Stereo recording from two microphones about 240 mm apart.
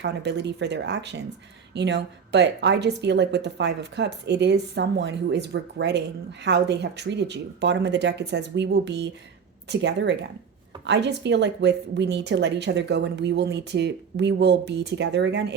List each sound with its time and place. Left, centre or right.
0.0 s a woman's voice: right